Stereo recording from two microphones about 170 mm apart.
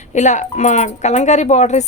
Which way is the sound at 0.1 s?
45° left (ahead or behind).